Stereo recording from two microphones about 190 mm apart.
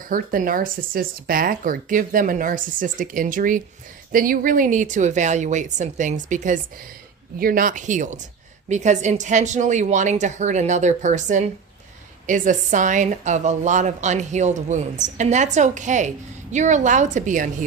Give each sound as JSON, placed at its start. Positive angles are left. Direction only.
{"t": 0.1, "sound": "a woman's voice", "side_deg": -45}